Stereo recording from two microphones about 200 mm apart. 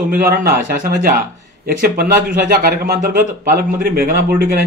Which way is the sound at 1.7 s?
45° right (ahead or behind).